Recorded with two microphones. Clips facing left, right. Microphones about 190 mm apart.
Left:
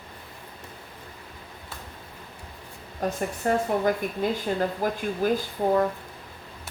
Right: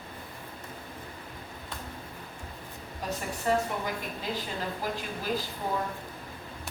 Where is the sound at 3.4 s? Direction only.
55° left (ahead or behind).